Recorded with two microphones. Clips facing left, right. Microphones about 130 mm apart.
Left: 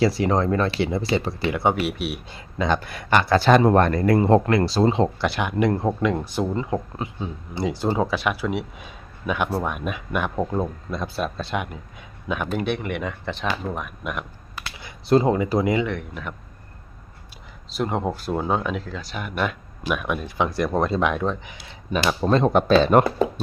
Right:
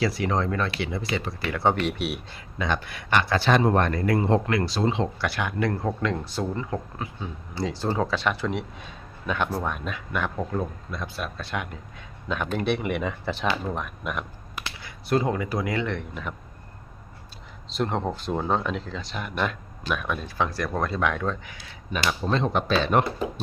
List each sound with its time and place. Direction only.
0.0 s speech: 30° left (ahead or behind)
1.4 s speech: 15° left (ahead or behind); by 2.2 s centre (ahead or behind)
2.3 s speech: 30° left (ahead or behind)
5.2 s speech: 20° left (ahead or behind)
11.5 s speech: 15° left (ahead or behind)
12.3 s speech: 5° left (ahead or behind)
14.8 s speech: 30° left (ahead or behind)
15.7 s speech: 5° left (ahead or behind)
17.7 s speech: 5° left (ahead or behind)
22.3 s speech: 45° left (ahead or behind)